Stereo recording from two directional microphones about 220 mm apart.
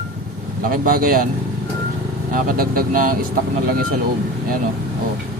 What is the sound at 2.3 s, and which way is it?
Speech, 40° right (ahead or behind).